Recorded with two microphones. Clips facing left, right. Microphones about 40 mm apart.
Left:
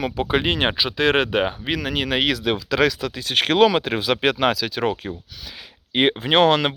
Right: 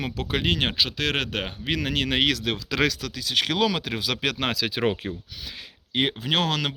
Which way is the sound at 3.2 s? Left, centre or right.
Left.